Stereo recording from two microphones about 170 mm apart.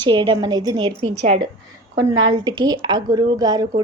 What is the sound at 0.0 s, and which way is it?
A woman's voice, 30° right (ahead or behind).